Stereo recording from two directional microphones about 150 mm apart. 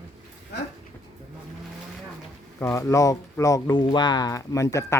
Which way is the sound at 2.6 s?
20° left (ahead or behind).